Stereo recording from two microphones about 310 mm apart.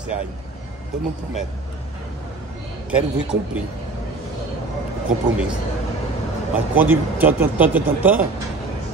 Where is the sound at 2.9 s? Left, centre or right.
Centre.